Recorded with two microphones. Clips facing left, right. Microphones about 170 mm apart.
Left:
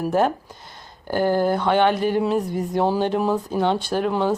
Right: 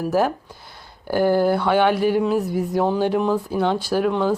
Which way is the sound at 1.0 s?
10° right (ahead or behind).